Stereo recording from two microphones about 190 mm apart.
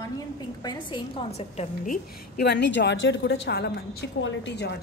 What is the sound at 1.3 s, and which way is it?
A woman's voice, 35° left (ahead or behind).